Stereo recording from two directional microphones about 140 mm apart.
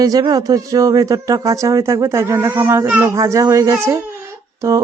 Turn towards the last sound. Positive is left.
turn(degrees=-20)  # may be behind; listen again after turning